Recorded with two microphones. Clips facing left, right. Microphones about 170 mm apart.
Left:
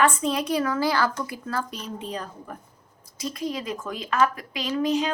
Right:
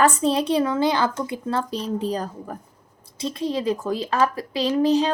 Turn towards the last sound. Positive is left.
turn(degrees=-35)  # may be behind; listen again after turning